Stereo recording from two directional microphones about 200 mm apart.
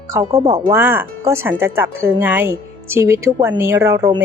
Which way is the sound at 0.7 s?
10° right (ahead or behind).